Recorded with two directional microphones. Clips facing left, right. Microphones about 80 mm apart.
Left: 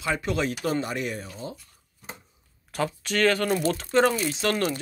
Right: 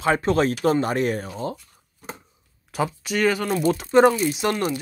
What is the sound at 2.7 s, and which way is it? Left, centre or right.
Speech, centre.